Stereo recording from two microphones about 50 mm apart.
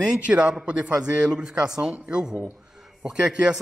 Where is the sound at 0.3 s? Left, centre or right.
Centre.